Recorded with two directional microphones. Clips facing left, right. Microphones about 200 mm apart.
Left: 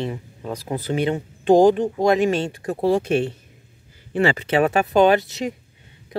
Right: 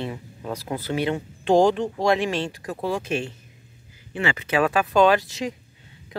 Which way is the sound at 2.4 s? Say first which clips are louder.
Left 5 dB; 25° left (ahead or behind).